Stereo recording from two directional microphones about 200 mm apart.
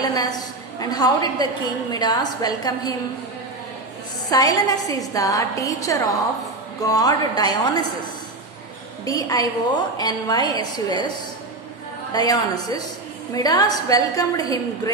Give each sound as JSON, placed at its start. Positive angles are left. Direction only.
{"t": 0.0, "sound": "a woman's voice", "side_deg": 20}
{"t": 4.3, "sound": "a woman's voice", "side_deg": 20}
{"t": 9.0, "sound": "a woman's voice", "side_deg": 15}
{"t": 12.1, "sound": "a woman's voice", "side_deg": 20}